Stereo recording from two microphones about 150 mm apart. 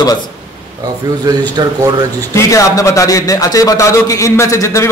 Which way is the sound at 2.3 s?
20° left (ahead or behind).